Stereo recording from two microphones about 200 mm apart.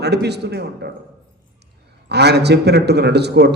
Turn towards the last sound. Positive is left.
turn(degrees=-55)  # may be behind; listen again after turning